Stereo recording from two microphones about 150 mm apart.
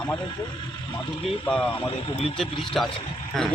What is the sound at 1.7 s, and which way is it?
Speech, 35° left (ahead or behind).